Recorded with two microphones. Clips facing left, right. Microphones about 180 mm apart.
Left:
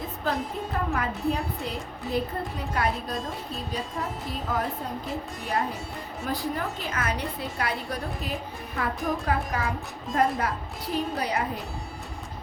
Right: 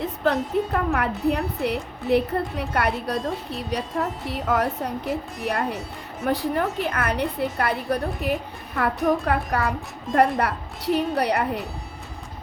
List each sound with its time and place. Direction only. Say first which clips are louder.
0.0 s a woman's voice: right 6 dB; 65° right (ahead or behind)